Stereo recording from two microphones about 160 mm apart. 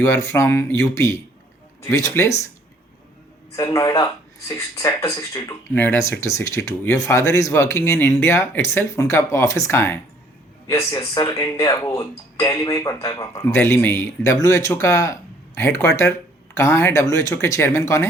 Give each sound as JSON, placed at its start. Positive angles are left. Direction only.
{"t": 0.0, "sound": "speech", "side_deg": 20}
{"t": 3.5, "sound": "speech", "side_deg": 20}